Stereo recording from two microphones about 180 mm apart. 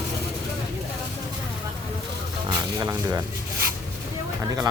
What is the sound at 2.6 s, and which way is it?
Speech, 20° right (ahead or behind).